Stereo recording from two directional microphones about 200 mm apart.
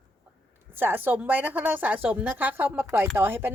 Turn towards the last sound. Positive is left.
turn(degrees=-10)  # may be behind; listen again after turning